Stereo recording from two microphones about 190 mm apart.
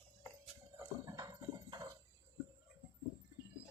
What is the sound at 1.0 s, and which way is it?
Clip-clop, 15° right (ahead or behind).